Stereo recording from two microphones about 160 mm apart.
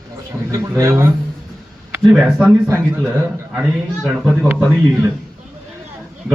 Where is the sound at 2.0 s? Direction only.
5° right (ahead or behind).